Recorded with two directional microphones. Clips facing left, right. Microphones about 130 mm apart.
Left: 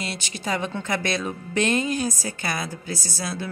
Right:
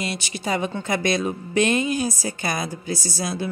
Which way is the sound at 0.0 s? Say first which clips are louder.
Right 3 dB; 15° right (ahead or behind).